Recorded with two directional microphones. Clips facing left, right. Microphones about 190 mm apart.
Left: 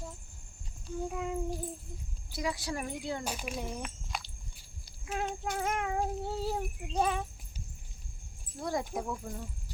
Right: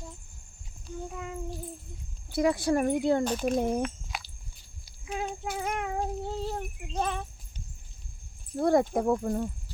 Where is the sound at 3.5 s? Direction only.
55° right (ahead or behind).